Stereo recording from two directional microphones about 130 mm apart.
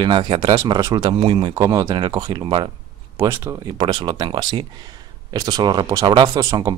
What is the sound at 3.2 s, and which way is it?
Speech, 20° right (ahead or behind).